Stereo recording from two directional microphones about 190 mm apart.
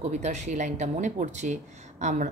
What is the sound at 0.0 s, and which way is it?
A woman's voice, 35° right (ahead or behind).